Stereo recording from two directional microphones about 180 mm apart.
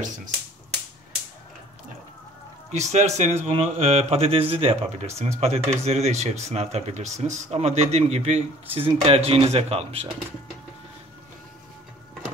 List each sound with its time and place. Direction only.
2.7 s speech: 40° right (ahead or behind)